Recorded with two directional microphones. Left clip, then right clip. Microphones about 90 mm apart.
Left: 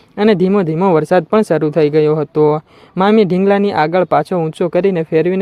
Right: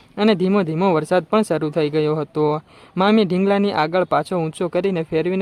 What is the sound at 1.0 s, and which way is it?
Speech, 30° left (ahead or behind).